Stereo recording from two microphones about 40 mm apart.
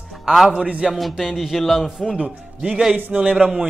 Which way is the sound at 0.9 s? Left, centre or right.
Centre.